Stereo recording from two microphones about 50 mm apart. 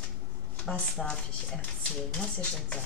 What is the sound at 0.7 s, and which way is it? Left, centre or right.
Speech, centre.